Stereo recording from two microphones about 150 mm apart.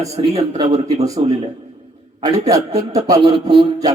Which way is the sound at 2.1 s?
40° right (ahead or behind).